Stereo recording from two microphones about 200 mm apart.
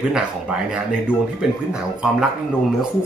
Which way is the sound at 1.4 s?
Centre (ahead or behind).